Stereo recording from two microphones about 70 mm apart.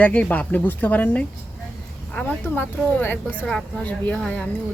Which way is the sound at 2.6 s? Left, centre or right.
Left.